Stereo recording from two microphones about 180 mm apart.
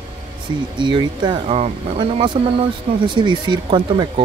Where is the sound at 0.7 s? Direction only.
25° right (ahead or behind).